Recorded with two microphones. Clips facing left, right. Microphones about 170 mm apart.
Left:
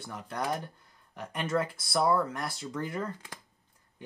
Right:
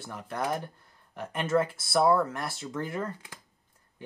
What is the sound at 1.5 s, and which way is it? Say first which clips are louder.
Speech: right 4 dB; 25° right (ahead or behind).